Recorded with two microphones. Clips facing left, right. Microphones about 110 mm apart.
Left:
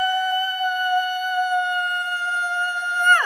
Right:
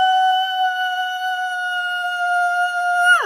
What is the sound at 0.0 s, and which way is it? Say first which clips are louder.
Music: right 7 dB; 20° right (ahead or behind).